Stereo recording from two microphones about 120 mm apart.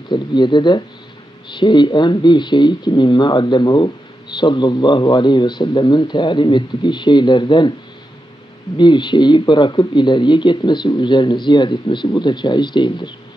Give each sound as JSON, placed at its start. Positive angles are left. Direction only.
{"t": 0.1, "sound": "speech", "side_deg": 40}
{"t": 8.7, "sound": "speech", "side_deg": 40}